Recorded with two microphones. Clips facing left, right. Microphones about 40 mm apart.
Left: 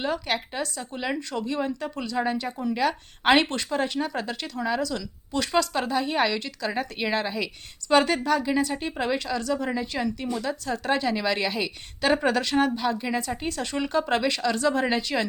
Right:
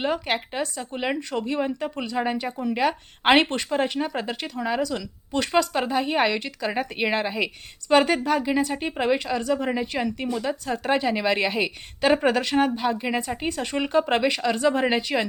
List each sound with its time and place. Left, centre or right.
0.0 s speech: centre
2.5 s speech: centre
2.7 s a woman's voice: right